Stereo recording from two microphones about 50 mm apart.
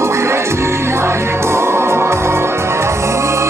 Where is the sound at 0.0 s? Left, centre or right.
Right.